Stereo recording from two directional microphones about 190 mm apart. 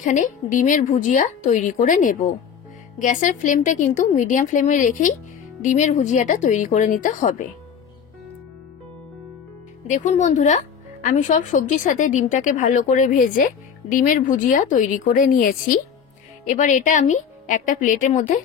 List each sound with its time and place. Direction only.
0.0 s a woman's voice: 40° left (ahead or behind)
9.8 s a woman's voice: 40° left (ahead or behind)